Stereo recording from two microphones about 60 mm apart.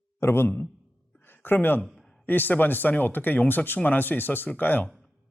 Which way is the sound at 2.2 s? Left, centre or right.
Left.